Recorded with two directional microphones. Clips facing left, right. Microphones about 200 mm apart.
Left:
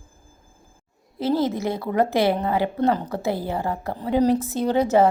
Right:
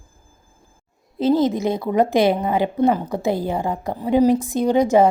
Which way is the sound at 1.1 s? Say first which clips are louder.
Right 5 dB; 20° right (ahead or behind).